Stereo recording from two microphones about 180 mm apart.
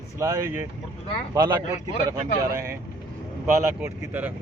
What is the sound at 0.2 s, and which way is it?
Speech, 15° right (ahead or behind).